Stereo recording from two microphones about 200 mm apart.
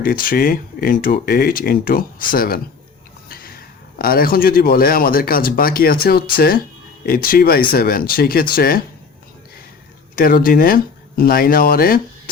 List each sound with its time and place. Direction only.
0.0 s speech: 45° left (ahead or behind)
3.2 s a sound: 45° left (ahead or behind)
3.9 s speech: 45° left (ahead or behind)
10.2 s speech: 45° left (ahead or behind)